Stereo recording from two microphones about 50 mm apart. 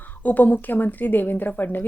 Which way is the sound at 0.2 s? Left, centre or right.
Left.